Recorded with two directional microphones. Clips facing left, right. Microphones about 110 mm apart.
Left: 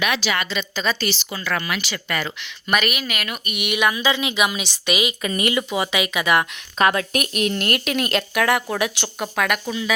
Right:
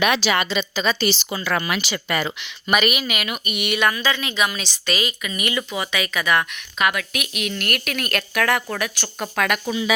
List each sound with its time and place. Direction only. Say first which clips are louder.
0.0 s speech: right 3 dB; 35° right (ahead or behind); by 2.5 s 15° right (ahead or behind)
2.6 s speech: right 2 dB; 5° right (ahead or behind); by 6.4 s 20° left (ahead or behind)
6.7 s speech: left 4 dB; 35° left (ahead or behind)
7.6 s speech: left 4 dB; 25° left (ahead or behind)
9.1 s speech: right 1 dB; 5° left (ahead or behind)